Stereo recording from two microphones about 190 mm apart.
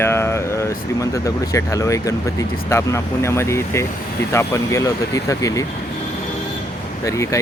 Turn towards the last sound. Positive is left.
turn(degrees=15)  # may be behind; listen again after turning